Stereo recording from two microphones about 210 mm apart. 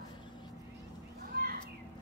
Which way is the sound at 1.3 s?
45° right (ahead or behind).